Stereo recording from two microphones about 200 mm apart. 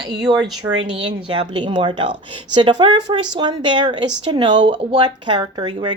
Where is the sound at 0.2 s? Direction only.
20° right (ahead or behind).